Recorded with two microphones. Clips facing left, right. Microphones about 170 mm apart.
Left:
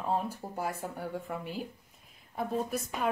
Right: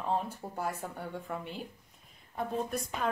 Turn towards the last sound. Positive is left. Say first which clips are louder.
# left 1 dB
turn(degrees=5)  # may be behind; listen again after turning